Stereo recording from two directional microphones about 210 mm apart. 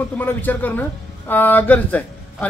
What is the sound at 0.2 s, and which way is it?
A woman's voice, 10° left (ahead or behind).